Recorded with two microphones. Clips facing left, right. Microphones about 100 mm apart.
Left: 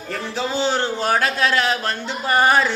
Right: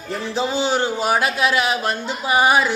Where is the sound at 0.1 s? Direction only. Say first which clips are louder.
Right 2 dB; 20° right (ahead or behind).